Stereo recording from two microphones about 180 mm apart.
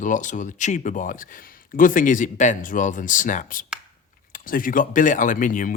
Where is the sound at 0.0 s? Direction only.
45° left (ahead or behind).